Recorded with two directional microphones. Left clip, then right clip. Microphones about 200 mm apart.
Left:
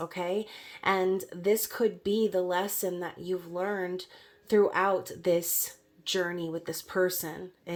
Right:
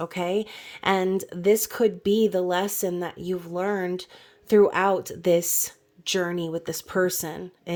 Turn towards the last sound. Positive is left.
turn(degrees=-45)  # may be behind; listen again after turning